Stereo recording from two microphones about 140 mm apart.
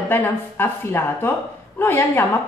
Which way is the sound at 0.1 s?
15° left (ahead or behind).